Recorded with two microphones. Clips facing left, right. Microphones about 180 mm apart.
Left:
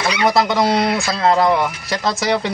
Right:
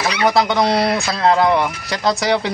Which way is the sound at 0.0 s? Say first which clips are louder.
Even; centre (ahead or behind).